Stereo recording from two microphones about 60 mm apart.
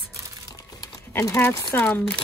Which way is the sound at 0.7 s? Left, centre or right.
Left.